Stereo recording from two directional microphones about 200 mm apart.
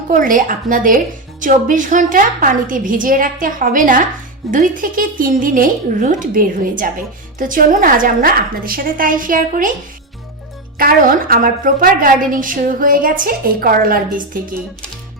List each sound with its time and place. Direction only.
0.1 s a woman's voice: 40° right (ahead or behind)
10.8 s a woman's voice: 45° right (ahead or behind)